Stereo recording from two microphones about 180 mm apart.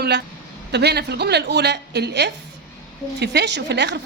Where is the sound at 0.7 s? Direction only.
65° right (ahead or behind).